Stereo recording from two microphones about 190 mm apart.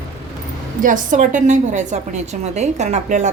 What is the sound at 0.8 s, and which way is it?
A woman's voice, 45° right (ahead or behind).